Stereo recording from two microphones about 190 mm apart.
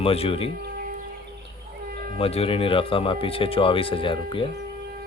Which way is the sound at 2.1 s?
30° left (ahead or behind).